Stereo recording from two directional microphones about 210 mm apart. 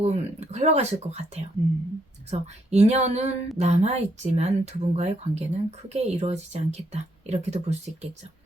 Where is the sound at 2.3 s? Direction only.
30° right (ahead or behind).